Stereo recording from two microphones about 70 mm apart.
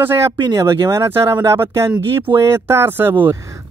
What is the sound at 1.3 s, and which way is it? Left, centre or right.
Speech, right.